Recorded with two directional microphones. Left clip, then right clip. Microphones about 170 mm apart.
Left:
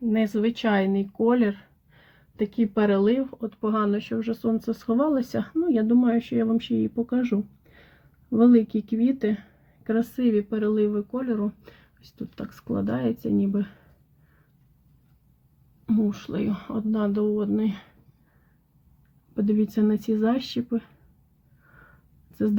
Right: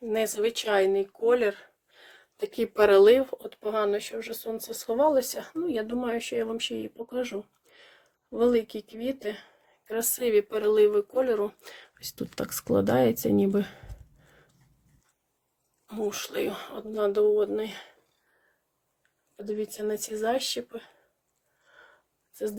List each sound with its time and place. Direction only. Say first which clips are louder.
0.1 s speech: even; 15° right (ahead or behind)
2.6 s speech: right 5 dB; 50° right (ahead or behind)
3.5 s speech: left 1 dB; 20° right (ahead or behind)
10.2 s speech: right 3 dB; 50° right (ahead or behind)
16.0 s speech: even; 40° right (ahead or behind)
17.1 s speech: right 6 dB; 25° right (ahead or behind)
19.5 s speech: left 3 dB; 10° right (ahead or behind)